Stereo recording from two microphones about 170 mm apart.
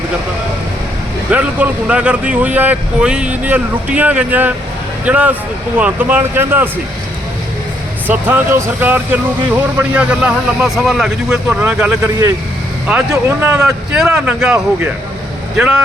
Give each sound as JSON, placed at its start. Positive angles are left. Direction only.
{"t": 1.3, "sound": "speech", "side_deg": -10}
{"t": 8.0, "sound": "speech", "side_deg": -10}